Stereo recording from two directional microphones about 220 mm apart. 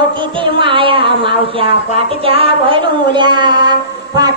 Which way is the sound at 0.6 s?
25° right (ahead or behind).